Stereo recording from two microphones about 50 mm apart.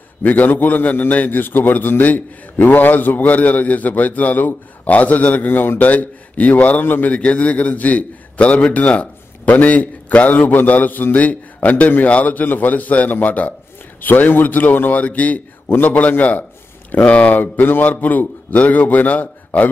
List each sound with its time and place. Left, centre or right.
0.2 s a man's voice: left
7.1 s a man's voice: left